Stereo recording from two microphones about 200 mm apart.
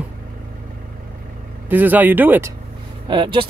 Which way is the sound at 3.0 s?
25° right (ahead or behind).